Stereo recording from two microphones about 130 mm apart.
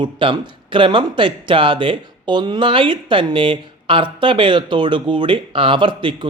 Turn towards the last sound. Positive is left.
turn(degrees=-40)  # may be behind; listen again after turning